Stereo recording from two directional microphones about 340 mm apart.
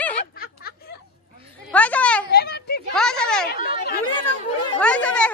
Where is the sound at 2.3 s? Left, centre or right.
Left.